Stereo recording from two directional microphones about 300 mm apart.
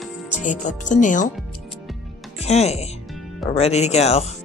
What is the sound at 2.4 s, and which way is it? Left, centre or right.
Speech, left.